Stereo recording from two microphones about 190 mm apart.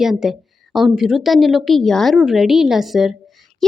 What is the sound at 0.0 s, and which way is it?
A woman's voice, centre (ahead or behind).